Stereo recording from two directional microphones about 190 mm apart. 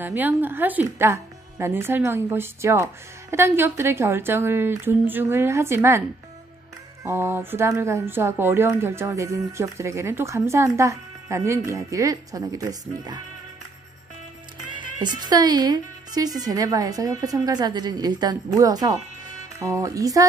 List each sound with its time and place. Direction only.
0.0 s speech: 10° right (ahead or behind)
15.0 s a woman's voice: 20° right (ahead or behind)